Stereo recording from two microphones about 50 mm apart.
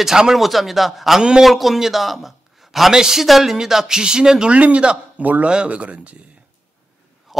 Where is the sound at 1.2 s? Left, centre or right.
Centre.